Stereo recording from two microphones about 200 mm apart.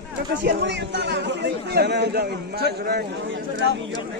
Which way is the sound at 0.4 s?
60° right (ahead or behind).